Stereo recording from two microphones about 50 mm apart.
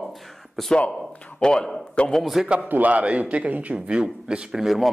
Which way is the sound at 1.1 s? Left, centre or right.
Left.